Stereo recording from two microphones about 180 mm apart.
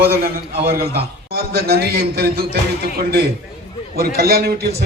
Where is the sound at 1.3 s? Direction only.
60° right (ahead or behind).